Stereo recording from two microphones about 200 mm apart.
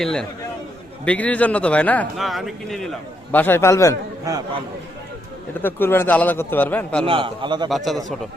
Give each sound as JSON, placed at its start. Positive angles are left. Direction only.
{"t": 0.0, "sound": "a man's voice", "side_deg": 5}
{"t": 5.6, "sound": "speech", "side_deg": 10}
{"t": 7.0, "sound": "a man's voice", "side_deg": -25}
{"t": 7.7, "sound": "a man's voice", "side_deg": 0}